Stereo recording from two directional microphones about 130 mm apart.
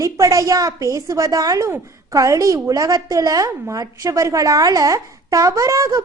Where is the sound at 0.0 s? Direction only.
25° right (ahead or behind).